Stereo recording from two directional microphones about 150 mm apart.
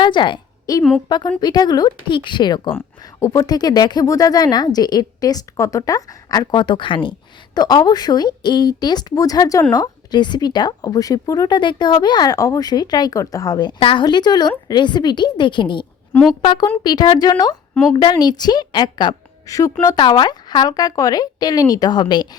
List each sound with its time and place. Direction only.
0.0 s a woman's voice: 30° left (ahead or behind)
2.7 s a woman's voice: 20° left (ahead or behind)